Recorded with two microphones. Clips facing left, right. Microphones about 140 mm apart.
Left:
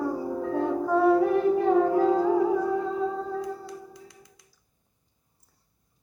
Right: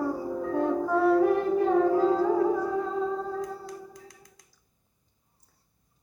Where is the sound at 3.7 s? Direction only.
45° right (ahead or behind).